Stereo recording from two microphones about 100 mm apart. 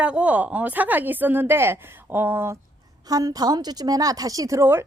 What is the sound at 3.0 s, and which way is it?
Speech, 40° right (ahead or behind).